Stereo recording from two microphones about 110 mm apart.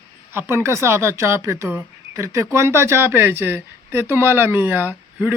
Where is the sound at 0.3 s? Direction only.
25° right (ahead or behind).